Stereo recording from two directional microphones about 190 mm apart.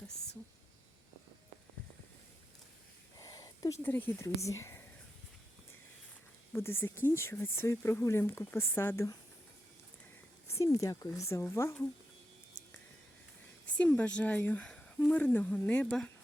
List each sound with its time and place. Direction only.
3.2 s speech: 20° left (ahead or behind)
6.5 s speech: 10° left (ahead or behind)
10.5 s speech: 15° left (ahead or behind)
13.7 s speech: 10° left (ahead or behind)